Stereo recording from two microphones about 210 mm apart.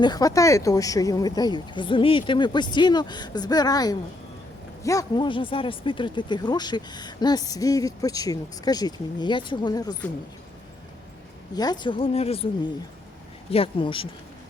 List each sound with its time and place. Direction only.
0.0 s speech: 20° left (ahead or behind)
11.5 s speech: 20° left (ahead or behind)
13.5 s speech: 25° left (ahead or behind)